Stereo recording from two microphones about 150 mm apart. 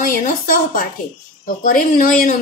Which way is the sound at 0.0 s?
65° left (ahead or behind).